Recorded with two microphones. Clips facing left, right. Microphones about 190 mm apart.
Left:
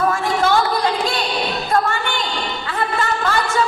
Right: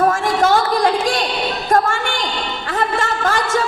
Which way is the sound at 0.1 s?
45° right (ahead or behind).